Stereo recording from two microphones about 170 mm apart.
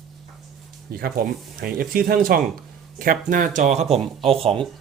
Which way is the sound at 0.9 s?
60° right (ahead or behind).